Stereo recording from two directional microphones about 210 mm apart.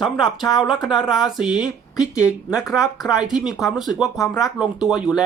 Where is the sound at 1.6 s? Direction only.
15° left (ahead or behind).